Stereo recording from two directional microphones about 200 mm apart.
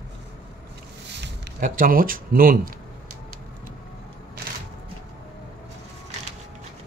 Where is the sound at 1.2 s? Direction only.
45° right (ahead or behind).